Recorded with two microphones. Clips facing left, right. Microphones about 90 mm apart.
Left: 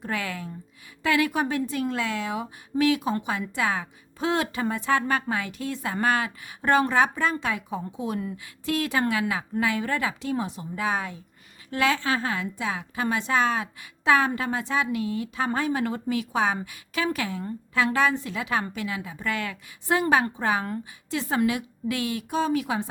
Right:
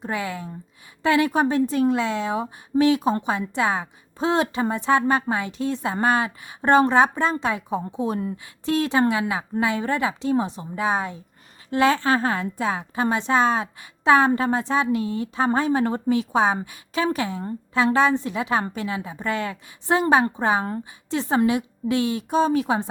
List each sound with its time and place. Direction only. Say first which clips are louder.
0.0 s a woman's voice: right 3 dB; 20° right (ahead or behind)